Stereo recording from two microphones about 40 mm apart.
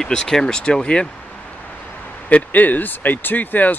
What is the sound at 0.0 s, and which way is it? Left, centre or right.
Speech, centre.